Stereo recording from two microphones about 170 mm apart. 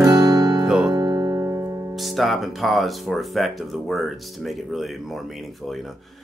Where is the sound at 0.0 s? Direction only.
20° right (ahead or behind).